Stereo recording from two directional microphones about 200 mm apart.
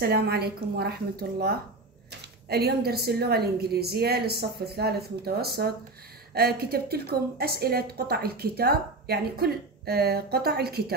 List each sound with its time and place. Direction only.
0.0 s a woman's voice: 50° right (ahead or behind)
2.4 s a woman's voice: 50° right (ahead or behind)